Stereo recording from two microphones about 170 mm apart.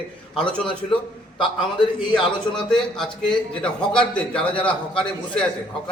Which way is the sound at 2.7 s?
5° left (ahead or behind).